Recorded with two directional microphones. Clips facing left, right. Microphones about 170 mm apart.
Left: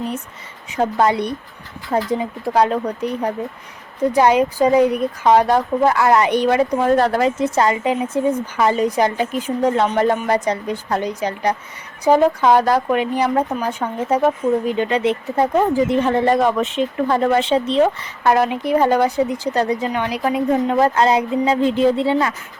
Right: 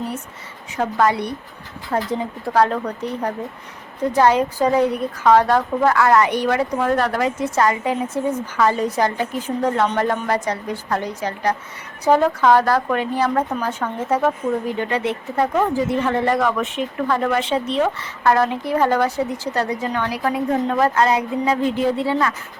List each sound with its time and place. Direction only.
0.8 s speech: 25° left (ahead or behind)
1.9 s speech: 10° left (ahead or behind); by 17.8 s 30° left (ahead or behind)
18.0 s speech: 15° left (ahead or behind)